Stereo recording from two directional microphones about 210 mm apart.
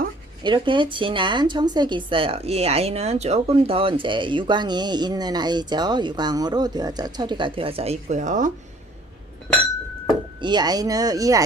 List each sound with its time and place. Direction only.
0.4 s speech: 25° right (ahead or behind)
10.4 s speech: 20° right (ahead or behind)